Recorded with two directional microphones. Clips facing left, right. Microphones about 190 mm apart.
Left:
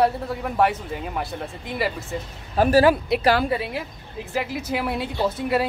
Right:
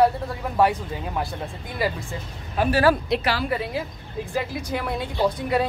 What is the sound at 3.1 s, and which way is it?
Speech, 5° left (ahead or behind).